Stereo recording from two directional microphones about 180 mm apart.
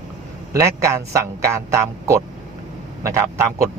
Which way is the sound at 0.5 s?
15° right (ahead or behind).